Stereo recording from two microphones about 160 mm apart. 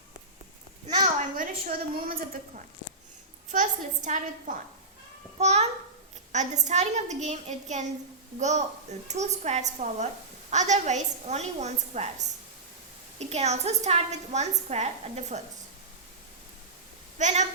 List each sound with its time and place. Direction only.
1.0 s a woman's voice: 55° right (ahead or behind)
3.5 s a woman's voice: 50° right (ahead or behind)
13.1 s a woman's voice: 45° right (ahead or behind)
17.2 s a woman's voice: 50° right (ahead or behind)